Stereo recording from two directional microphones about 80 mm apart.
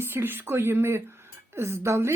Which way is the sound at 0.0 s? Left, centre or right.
Right.